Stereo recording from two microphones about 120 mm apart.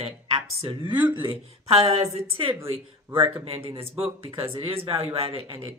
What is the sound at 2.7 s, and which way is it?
A man's voice, 45° right (ahead or behind).